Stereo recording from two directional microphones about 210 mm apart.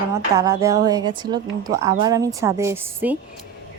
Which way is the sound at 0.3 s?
15° right (ahead or behind).